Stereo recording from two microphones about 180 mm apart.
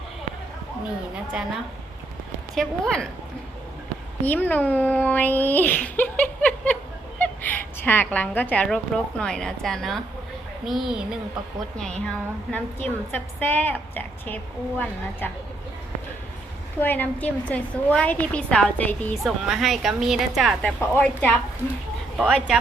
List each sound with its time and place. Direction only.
2.6 s a woman's voice: 5° left (ahead or behind)
4.2 s a woman's voice: 10° left (ahead or behind)
16.8 s a woman's voice: 10° left (ahead or behind)
19.1 s a woman's voice: centre (ahead or behind)